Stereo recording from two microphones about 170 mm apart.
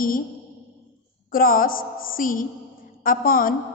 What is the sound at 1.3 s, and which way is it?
A woman's voice, 55° left (ahead or behind).